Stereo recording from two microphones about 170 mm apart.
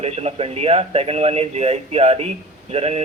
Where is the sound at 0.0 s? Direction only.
35° right (ahead or behind).